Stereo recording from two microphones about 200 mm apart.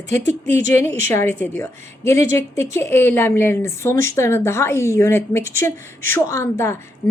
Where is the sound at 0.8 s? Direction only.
10° left (ahead or behind).